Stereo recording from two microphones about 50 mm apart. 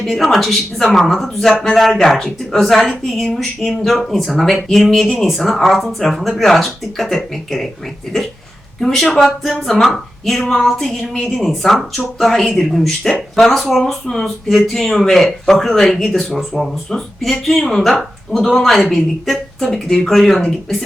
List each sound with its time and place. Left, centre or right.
0.0 s speech: centre